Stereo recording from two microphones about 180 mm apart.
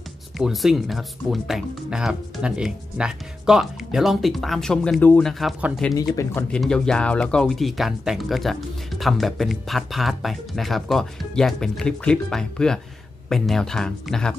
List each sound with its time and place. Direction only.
0.4 s speech: centre (ahead or behind)
6.1 s speech: 10° left (ahead or behind)